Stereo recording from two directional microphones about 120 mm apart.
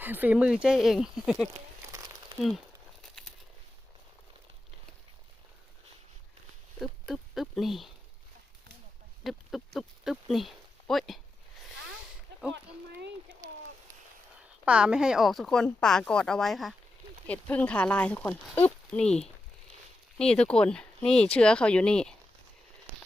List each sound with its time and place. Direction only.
0.0 s speech: 15° right (ahead or behind)
1.9 s a sound: 30° right (ahead or behind)
6.7 s speech: centre (ahead or behind)
9.2 s speech: centre (ahead or behind)
14.6 s speech: 10° right (ahead or behind)
17.2 s speech: 10° left (ahead or behind)
19.0 s speech: 65° left (ahead or behind)
20.1 s speech: 5° left (ahead or behind)